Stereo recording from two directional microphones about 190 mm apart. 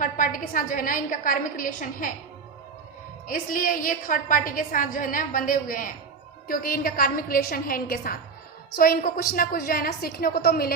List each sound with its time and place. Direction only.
0.0 s a woman's voice: 45° left (ahead or behind)
3.2 s a woman's voice: 45° left (ahead or behind)